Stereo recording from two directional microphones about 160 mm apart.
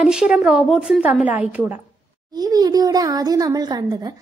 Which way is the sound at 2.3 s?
25° right (ahead or behind).